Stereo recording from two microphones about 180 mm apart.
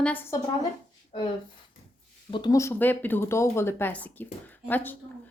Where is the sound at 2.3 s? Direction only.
25° left (ahead or behind).